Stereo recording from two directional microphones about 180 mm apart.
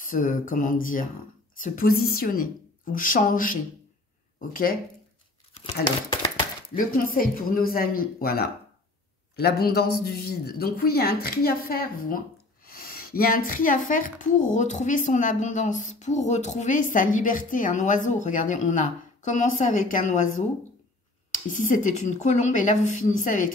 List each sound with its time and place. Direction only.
0.0 s a woman's voice: 50° left (ahead or behind)
6.9 s a woman's voice: 50° left (ahead or behind)
21.3 s a woman's voice: 45° left (ahead or behind)